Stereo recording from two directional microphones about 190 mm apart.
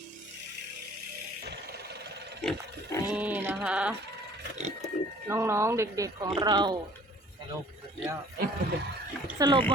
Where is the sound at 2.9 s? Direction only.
15° left (ahead or behind).